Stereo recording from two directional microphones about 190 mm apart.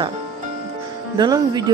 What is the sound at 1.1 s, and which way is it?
Speech, 20° right (ahead or behind).